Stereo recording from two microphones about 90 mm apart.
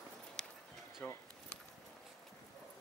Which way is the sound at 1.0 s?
10° left (ahead or behind).